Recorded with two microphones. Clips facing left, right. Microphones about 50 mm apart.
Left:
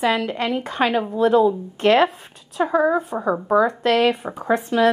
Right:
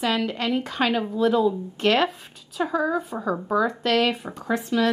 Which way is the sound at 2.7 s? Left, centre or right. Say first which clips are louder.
Left 6 dB; left.